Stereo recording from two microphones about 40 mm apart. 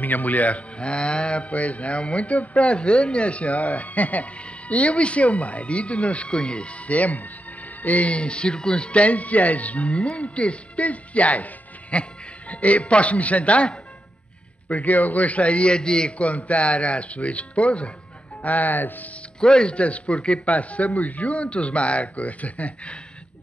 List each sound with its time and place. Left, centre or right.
0.0 s speech: left
16.2 s speech: left
18.4 s speech: left
19.4 s speech: left